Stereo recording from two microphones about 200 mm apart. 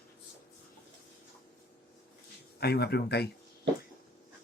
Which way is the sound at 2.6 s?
55° left (ahead or behind).